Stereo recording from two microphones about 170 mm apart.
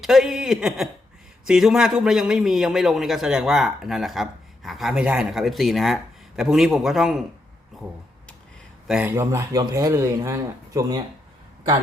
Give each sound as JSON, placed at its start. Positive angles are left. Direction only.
{"t": 0.0, "sound": "a man's voice", "side_deg": 0}
{"t": 8.9, "sound": "a man's voice", "side_deg": -10}